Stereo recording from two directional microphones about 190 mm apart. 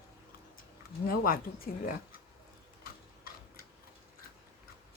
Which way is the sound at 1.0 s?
50° left (ahead or behind).